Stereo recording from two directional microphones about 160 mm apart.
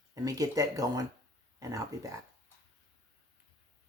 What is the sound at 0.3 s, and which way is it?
Speech, 20° right (ahead or behind).